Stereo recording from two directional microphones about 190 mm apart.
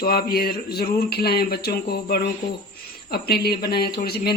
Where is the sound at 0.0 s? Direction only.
55° left (ahead or behind).